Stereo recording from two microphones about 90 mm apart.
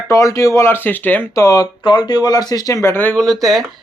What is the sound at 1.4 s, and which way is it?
Speech, 35° left (ahead or behind).